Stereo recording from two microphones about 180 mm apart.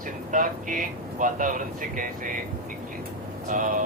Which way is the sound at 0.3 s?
45° right (ahead or behind).